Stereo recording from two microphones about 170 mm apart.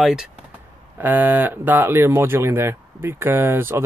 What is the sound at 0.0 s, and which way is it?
Speech, 5° right (ahead or behind).